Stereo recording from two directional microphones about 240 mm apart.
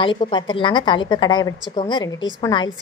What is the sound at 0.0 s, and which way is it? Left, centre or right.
A woman's voice, centre.